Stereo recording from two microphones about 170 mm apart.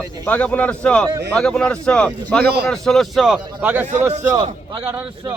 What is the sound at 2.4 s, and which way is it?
Speech, 70° right (ahead or behind).